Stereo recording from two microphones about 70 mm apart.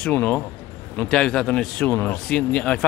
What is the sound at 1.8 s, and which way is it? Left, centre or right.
Speech, left.